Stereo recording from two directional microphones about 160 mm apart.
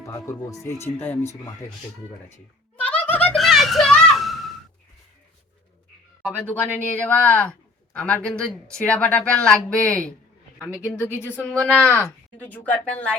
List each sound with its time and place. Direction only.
0.0 s speech: 20° left (ahead or behind)
2.3 s a sound: 10° left (ahead or behind)
6.4 s speech: 10° left (ahead or behind)
10.6 s a man's voice: 5° right (ahead or behind)
11.1 s speech: 15° left (ahead or behind)